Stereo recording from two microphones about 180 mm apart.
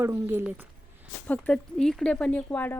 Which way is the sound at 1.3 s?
5° left (ahead or behind).